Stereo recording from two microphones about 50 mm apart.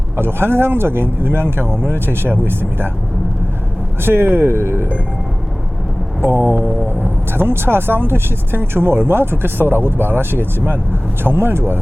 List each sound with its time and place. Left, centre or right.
0.2 s speech: right
4.0 s speech: right
6.2 s speech: right